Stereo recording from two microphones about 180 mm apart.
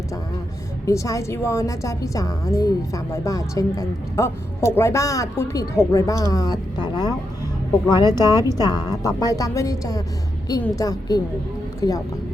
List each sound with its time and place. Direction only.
0.9 s a woman's voice: 20° left (ahead or behind)